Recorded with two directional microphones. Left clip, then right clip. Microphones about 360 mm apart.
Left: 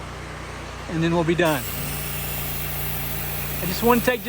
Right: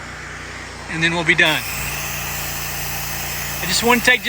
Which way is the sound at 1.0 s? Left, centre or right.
Centre.